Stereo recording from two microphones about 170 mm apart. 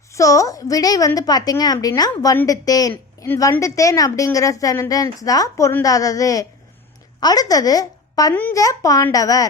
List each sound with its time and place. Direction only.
0.1 s a woman's voice: 20° left (ahead or behind)
8.3 s a woman's voice: 10° left (ahead or behind)